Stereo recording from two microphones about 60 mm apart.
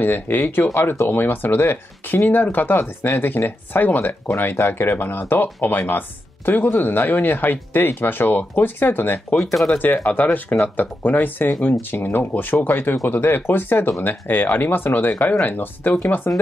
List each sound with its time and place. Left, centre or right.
0.0 s speech: left
9.4 s speech: centre
9.7 s speech: left